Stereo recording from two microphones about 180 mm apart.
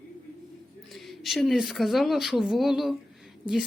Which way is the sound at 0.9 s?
Centre (ahead or behind).